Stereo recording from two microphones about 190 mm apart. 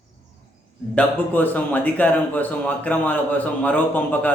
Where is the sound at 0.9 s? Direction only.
10° left (ahead or behind).